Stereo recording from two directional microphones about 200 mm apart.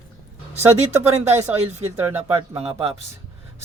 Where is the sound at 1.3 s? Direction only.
10° right (ahead or behind).